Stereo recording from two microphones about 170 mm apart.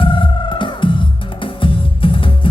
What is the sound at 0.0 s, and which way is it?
Music, 30° left (ahead or behind).